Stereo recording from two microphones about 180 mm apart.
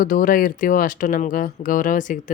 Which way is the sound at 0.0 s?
50° left (ahead or behind).